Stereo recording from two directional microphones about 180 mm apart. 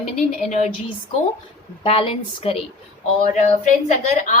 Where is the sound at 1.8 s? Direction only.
30° left (ahead or behind).